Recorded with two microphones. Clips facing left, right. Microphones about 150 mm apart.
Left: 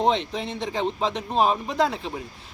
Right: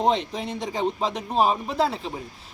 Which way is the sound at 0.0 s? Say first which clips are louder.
Even; 5° right (ahead or behind).